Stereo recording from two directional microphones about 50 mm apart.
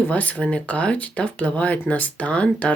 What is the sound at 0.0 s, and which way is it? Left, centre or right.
Speech, left.